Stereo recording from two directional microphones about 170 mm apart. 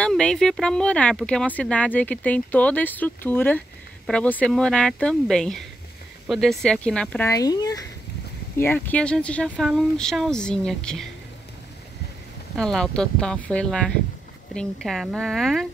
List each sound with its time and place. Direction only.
0.0 s speech: 5° left (ahead or behind)
7.2 s speech: 20° left (ahead or behind)
8.5 s speech: 10° left (ahead or behind)
12.5 s speech: centre (ahead or behind)